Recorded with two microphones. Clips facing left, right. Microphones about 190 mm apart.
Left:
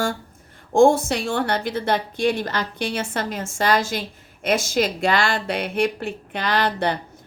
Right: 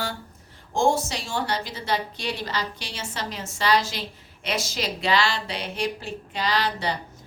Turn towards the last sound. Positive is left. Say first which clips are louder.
# left 4 dB
turn(degrees=55)  # may be behind; listen again after turning